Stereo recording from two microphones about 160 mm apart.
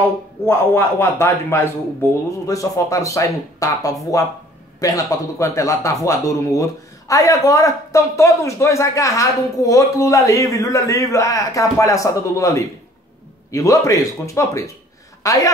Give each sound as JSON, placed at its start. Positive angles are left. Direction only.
{"t": 0.5, "sound": "a man's voice", "side_deg": 15}